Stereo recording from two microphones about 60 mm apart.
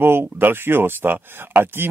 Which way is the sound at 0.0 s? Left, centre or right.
Right.